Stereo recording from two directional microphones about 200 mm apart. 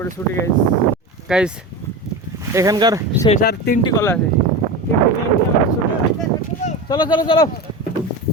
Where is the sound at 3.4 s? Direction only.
50° left (ahead or behind).